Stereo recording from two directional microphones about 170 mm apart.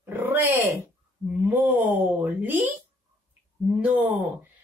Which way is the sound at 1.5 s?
10° right (ahead or behind).